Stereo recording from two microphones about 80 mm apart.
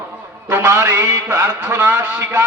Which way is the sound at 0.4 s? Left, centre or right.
Right.